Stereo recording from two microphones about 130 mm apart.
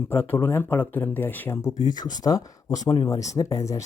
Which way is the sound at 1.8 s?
30° left (ahead or behind).